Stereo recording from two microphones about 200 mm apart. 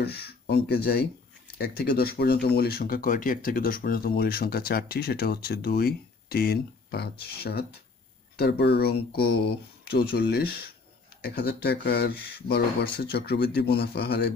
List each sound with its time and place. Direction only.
0.0 s speech: 50° left (ahead or behind)